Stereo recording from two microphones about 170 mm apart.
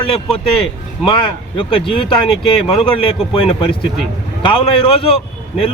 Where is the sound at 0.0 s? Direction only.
30° left (ahead or behind).